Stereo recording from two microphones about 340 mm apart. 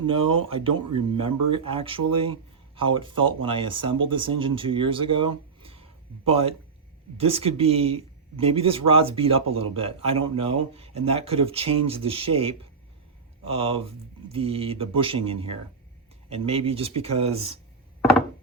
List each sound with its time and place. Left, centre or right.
0.0 s a man's voice: centre
5.5 s a sound: centre
7.2 s a man's voice: centre